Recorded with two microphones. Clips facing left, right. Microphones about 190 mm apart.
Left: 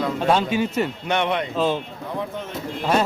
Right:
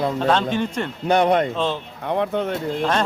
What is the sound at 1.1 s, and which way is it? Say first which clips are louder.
Speech: right 10 dB; 40° right (ahead or behind).